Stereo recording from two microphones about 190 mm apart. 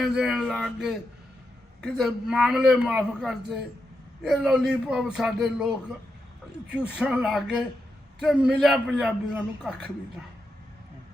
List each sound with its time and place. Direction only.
0.0 s a man's voice: centre (ahead or behind)
6.7 s a man's voice: 5° right (ahead or behind)